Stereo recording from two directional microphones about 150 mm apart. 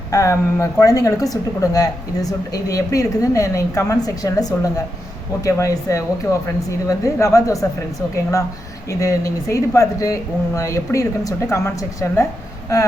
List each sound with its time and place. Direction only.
0.1 s a woman's voice: 20° left (ahead or behind)